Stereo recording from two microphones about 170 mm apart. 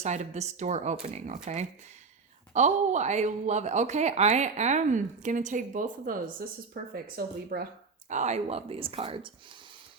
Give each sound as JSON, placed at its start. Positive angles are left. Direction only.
{"t": 0.0, "sound": "a woman's voice", "side_deg": -40}
{"t": 2.5, "sound": "a woman's voice", "side_deg": -45}
{"t": 8.1, "sound": "speech", "side_deg": -40}